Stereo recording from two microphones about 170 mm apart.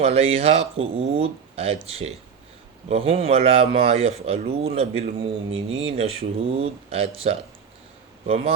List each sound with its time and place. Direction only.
0.0 s speech: 35° right (ahead or behind)